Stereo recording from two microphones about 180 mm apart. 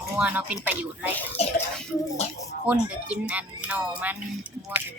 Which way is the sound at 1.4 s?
35° left (ahead or behind).